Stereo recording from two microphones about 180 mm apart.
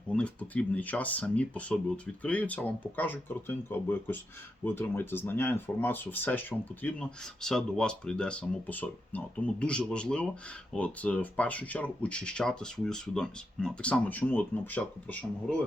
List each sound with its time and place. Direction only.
0.1 s speech: 5° left (ahead or behind)